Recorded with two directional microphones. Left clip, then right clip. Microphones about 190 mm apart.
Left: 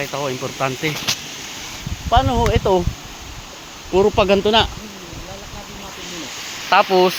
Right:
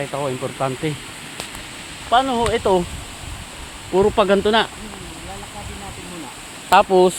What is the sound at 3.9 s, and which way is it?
Speech, 5° left (ahead or behind).